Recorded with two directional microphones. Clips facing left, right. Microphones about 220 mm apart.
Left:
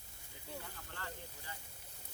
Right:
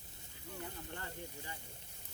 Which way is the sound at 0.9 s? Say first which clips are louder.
Right 3 dB; 20° right (ahead or behind).